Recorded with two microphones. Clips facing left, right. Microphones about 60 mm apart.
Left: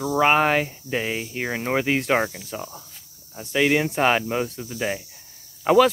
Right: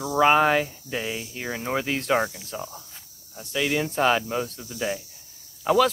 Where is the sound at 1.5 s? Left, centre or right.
Left.